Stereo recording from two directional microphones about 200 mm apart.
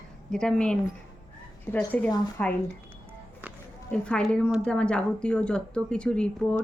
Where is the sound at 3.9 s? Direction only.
5° left (ahead or behind).